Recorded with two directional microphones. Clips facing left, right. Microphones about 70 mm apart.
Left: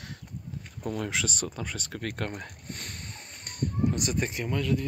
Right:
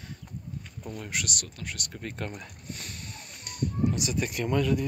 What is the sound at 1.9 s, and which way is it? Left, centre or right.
Speech, left.